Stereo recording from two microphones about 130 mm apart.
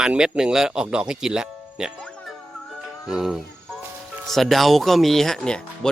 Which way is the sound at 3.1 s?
5° right (ahead or behind).